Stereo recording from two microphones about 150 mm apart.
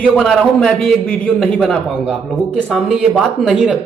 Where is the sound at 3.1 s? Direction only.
Centre (ahead or behind).